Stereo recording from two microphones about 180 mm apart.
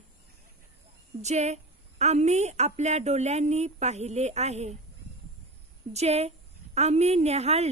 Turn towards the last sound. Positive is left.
turn(degrees=-35)  # may be behind; listen again after turning